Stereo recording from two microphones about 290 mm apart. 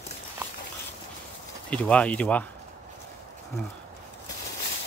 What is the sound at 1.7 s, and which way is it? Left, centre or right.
Speech, centre.